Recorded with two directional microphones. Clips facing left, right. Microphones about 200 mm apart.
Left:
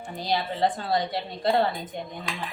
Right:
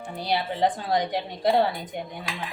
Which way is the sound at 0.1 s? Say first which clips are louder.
Right 1 dB; 10° right (ahead or behind).